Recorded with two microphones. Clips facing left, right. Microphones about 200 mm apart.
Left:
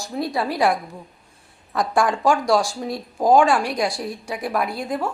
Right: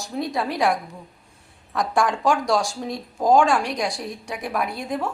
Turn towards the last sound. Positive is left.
turn(degrees=0)  # may be behind; listen again after turning